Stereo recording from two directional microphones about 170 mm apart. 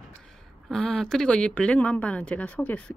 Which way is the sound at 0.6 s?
5° left (ahead or behind).